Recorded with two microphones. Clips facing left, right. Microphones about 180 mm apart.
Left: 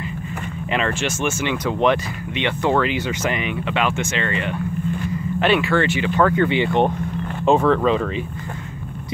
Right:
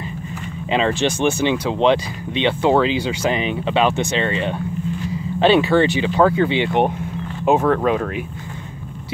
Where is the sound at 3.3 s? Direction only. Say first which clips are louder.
Right 3 dB; 25° right (ahead or behind).